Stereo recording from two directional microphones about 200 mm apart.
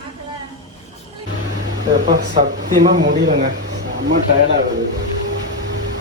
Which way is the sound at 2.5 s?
65° right (ahead or behind).